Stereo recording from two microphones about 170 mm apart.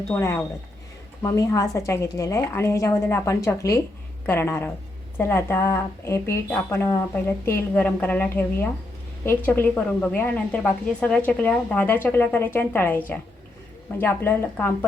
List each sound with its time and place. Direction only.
0.1 s a woman's voice: 15° left (ahead or behind)